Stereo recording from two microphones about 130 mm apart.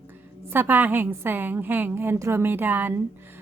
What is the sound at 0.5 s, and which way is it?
A woman's voice, 15° right (ahead or behind).